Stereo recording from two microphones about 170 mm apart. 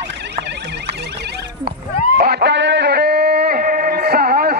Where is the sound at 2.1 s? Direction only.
65° right (ahead or behind).